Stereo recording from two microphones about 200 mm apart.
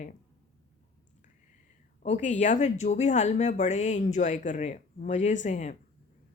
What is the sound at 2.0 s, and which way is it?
A woman's voice, 40° left (ahead or behind).